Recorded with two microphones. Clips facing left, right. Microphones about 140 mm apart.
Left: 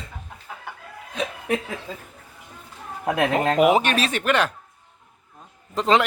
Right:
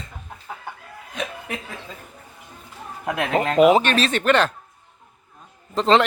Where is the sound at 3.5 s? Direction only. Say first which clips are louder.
Right 5 dB; 10° left (ahead or behind).